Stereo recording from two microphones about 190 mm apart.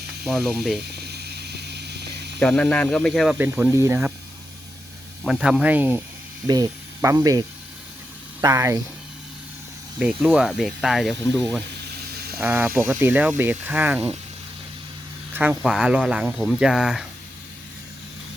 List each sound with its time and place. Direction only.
0.3 s speech: centre (ahead or behind)
0.9 s snake: 60° right (ahead or behind)
2.4 s speech: 5° left (ahead or behind)
3.3 s speech: 10° right (ahead or behind)
5.2 s speech: 5° right (ahead or behind)
10.0 s speech: 5° right (ahead or behind)
11.9 s a sound: 55° right (ahead or behind)
12.4 s speech: 10° right (ahead or behind)
15.3 s speech: 10° right (ahead or behind)